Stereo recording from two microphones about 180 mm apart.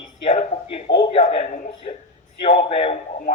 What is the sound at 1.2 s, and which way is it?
Speech, 45° left (ahead or behind).